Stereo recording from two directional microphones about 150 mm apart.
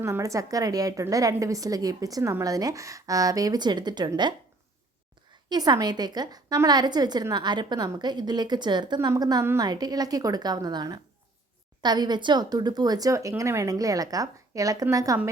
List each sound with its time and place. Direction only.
0.0 s a woman's voice: 20° right (ahead or behind)
5.5 s a woman's voice: 25° right (ahead or behind)